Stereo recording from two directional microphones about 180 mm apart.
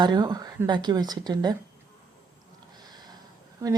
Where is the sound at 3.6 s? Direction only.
15° right (ahead or behind).